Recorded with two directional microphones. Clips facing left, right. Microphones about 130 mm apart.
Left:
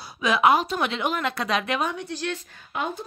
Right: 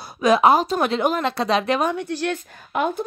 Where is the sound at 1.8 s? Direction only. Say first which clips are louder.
Right 5 dB; 50° right (ahead or behind).